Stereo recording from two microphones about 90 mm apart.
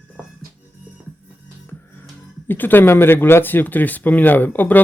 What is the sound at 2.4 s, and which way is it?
Speech, 20° left (ahead or behind).